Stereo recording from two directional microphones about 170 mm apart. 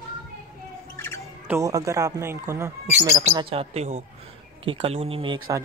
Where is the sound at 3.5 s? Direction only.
35° right (ahead or behind).